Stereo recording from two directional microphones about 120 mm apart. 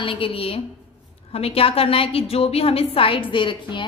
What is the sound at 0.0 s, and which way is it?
A woman's voice, 50° left (ahead or behind).